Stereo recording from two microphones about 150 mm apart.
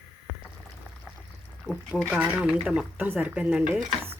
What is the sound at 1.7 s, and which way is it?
Speech, 5° right (ahead or behind).